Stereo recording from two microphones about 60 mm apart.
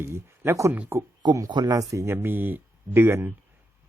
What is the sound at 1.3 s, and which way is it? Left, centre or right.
Speech, right.